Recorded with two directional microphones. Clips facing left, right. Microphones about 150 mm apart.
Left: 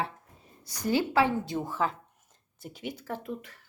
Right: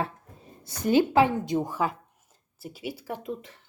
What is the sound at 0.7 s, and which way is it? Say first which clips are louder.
A woman's voice: right 5 dB; 20° right (ahead or behind).